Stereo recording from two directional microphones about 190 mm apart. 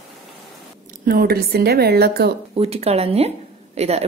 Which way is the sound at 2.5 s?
35° right (ahead or behind).